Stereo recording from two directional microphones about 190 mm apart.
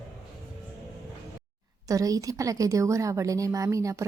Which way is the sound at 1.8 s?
20° right (ahead or behind).